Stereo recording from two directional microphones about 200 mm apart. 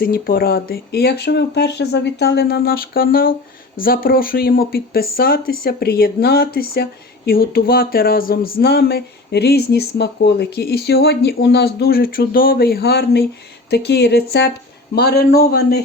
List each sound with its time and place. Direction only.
0.0 s speech: 45° left (ahead or behind)